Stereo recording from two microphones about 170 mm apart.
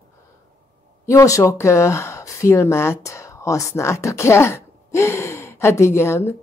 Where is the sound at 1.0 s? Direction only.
20° left (ahead or behind).